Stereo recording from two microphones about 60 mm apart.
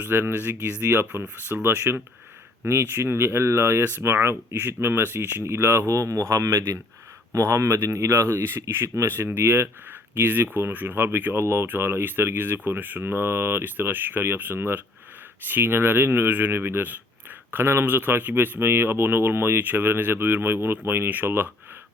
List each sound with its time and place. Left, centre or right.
0.0 s speech: right
5.9 s speech: right
7.3 s speech: right